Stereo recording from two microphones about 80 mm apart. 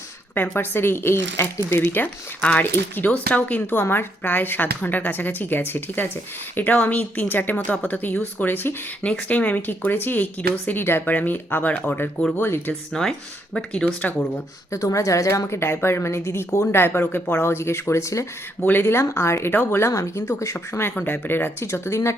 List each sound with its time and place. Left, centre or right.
0.5 s speech: left
12.9 s speech: centre
14.7 s a woman's voice: left
18.6 s a woman's voice: left